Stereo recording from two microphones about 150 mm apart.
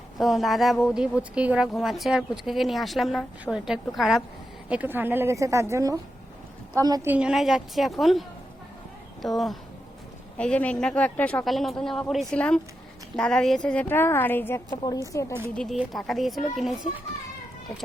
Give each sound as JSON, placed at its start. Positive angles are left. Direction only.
{"t": 0.2, "sound": "a woman's voice", "side_deg": 0}
{"t": 7.1, "sound": "a woman's voice", "side_deg": -5}
{"t": 9.2, "sound": "a woman's voice", "side_deg": 0}
{"t": 15.8, "sound": "a woman's voice", "side_deg": 0}